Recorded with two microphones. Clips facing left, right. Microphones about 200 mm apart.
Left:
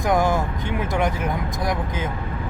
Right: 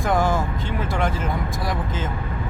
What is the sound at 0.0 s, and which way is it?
Speech, 15° left (ahead or behind).